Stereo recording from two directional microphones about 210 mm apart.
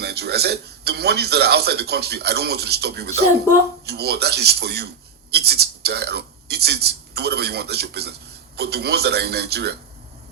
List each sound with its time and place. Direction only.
0.0 s speech: 50° right (ahead or behind)